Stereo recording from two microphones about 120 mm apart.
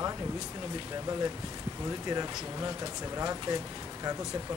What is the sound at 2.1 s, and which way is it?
Speech, 25° right (ahead or behind).